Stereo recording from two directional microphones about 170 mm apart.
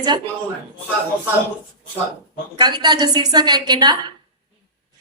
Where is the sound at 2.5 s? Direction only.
25° right (ahead or behind).